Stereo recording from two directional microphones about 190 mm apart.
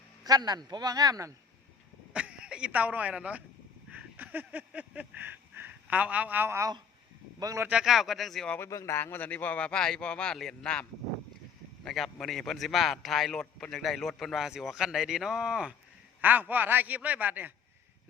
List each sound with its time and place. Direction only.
0.3 s a man's voice: 20° right (ahead or behind)
2.1 s speech: 5° right (ahead or behind)
3.8 s a sound: 10° right (ahead or behind)
7.3 s a man's voice: 15° right (ahead or behind)
7.7 s a man's voice: 5° right (ahead or behind)
8.5 s speech: 15° left (ahead or behind)
11.9 s a man's voice: centre (ahead or behind)